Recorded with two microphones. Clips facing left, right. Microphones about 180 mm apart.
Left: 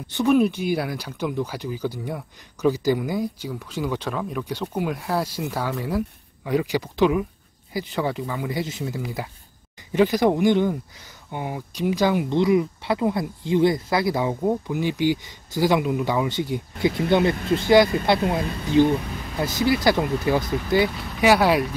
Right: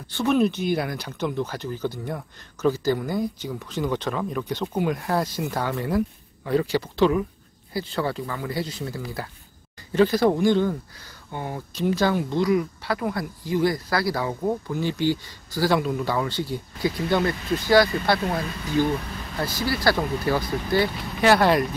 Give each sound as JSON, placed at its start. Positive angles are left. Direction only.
{"t": 0.1, "sound": "speech", "side_deg": 10}